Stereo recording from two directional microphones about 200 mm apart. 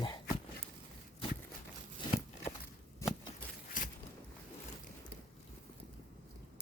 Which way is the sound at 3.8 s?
40° left (ahead or behind).